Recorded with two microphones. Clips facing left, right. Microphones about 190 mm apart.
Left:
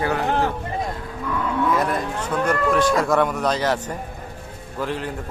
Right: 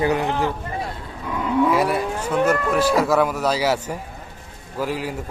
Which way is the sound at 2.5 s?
5° right (ahead or behind).